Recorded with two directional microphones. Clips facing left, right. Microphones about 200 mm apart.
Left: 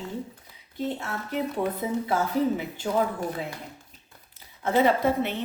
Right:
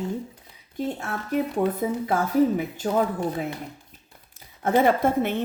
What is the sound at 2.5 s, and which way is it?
Speech, 45° right (ahead or behind).